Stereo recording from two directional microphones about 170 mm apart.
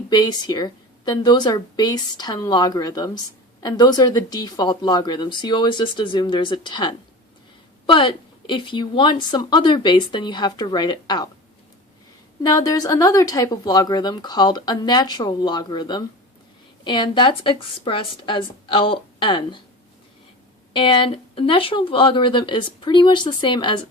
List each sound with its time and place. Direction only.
0.1 s speech: 25° left (ahead or behind)
12.4 s speech: 20° left (ahead or behind)
20.7 s speech: 30° left (ahead or behind)